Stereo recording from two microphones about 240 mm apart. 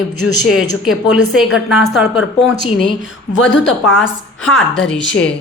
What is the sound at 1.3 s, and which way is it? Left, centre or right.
Speech, centre.